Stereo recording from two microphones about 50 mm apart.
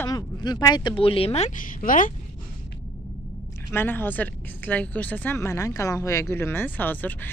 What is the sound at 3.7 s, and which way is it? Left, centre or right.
Speech, left.